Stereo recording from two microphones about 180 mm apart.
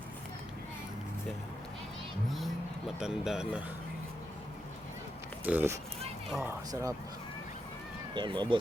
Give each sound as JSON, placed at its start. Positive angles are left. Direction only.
{"t": 3.0, "sound": "speech", "side_deg": -5}
{"t": 5.5, "sound": "speech", "side_deg": -15}
{"t": 8.1, "sound": "speech", "side_deg": -25}